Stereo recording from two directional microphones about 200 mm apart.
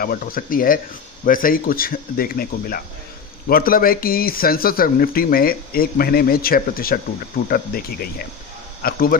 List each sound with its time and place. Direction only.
0.0 s speech: 45° left (ahead or behind)